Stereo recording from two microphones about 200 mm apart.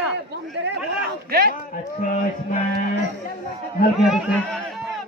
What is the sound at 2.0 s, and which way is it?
Speech, 40° left (ahead or behind).